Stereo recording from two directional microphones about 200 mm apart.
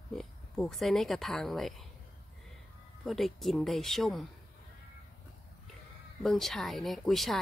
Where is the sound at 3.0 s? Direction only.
Centre (ahead or behind).